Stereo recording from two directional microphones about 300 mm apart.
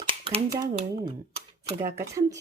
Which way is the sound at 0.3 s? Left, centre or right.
Centre.